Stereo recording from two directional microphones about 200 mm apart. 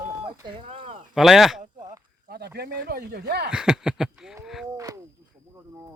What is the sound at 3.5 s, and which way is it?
Speech, 5° right (ahead or behind).